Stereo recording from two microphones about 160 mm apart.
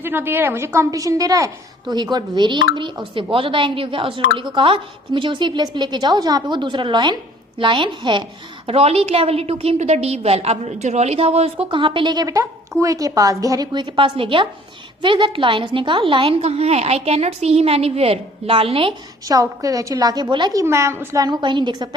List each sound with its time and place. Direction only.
0.0 s a woman's voice: 15° right (ahead or behind); by 18.9 s 35° right (ahead or behind)
19.2 s a woman's voice: 20° right (ahead or behind)